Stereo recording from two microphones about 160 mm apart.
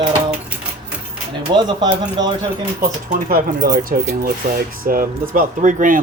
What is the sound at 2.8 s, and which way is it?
Speech, 60° right (ahead or behind).